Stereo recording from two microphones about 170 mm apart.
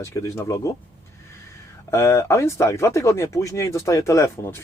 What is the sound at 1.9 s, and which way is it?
A man's voice, 15° left (ahead or behind).